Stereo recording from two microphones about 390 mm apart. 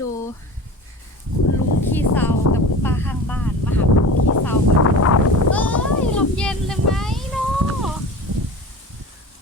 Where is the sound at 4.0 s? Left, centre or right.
Left.